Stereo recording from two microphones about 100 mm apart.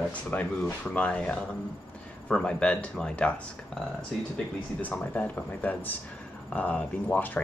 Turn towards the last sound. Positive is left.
turn(degrees=15)  # may be behind; listen again after turning